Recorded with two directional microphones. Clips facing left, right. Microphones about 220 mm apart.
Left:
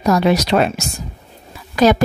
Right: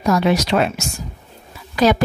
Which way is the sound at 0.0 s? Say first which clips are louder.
Left 2 dB; 40° left (ahead or behind).